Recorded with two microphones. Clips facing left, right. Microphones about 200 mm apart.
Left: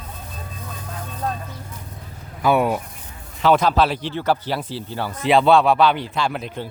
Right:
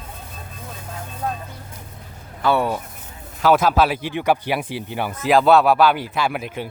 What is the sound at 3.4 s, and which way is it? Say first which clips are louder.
Speech: even; 5° right (ahead or behind).